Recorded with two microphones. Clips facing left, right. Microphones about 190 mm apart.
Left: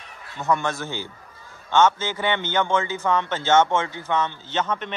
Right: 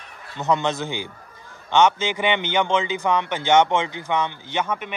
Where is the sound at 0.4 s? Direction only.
20° right (ahead or behind).